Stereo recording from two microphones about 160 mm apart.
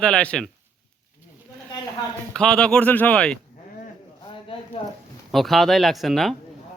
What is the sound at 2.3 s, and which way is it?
Speech, 5° left (ahead or behind).